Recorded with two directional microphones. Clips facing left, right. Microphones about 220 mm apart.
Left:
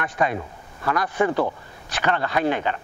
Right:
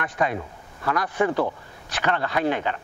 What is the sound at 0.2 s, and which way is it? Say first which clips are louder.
Speech: left 1 dB; 15° left (ahead or behind).